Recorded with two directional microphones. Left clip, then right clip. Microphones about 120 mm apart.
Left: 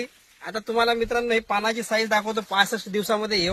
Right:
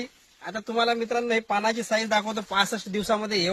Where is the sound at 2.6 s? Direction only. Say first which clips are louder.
Left 4 dB; 20° left (ahead or behind).